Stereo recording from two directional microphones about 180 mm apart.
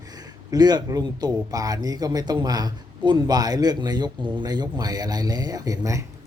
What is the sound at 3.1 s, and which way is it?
Speech, 25° right (ahead or behind).